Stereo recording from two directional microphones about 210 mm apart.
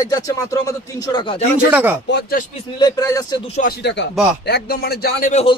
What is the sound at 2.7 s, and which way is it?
Speech, 15° left (ahead or behind).